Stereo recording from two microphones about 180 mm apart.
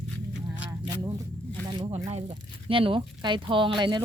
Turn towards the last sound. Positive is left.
turn(degrees=-25)  # may be behind; listen again after turning